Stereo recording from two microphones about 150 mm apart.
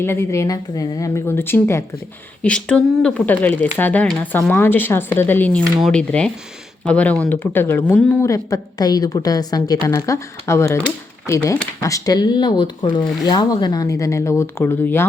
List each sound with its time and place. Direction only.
0.0 s speech: 15° left (ahead or behind)